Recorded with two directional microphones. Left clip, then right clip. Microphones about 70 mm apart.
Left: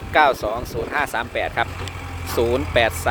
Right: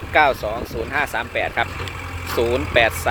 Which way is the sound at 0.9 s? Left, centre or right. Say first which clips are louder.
Right 1 dB; left.